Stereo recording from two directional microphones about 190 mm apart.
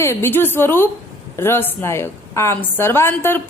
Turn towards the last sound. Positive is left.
turn(degrees=10)  # may be behind; listen again after turning